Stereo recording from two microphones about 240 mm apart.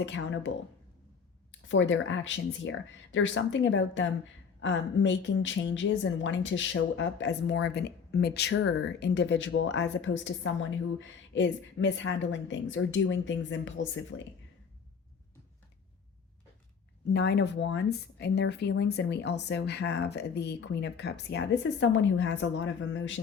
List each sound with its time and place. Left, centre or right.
0.0 s a woman's voice: left
1.6 s a woman's voice: left
17.1 s a woman's voice: left